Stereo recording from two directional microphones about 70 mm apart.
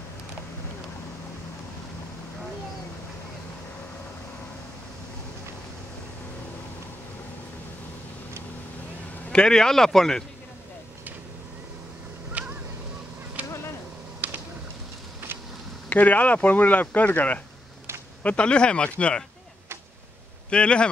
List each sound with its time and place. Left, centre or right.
9.3 s speech: centre
12.3 s a sound: right
15.9 s speech: left
20.4 s speech: centre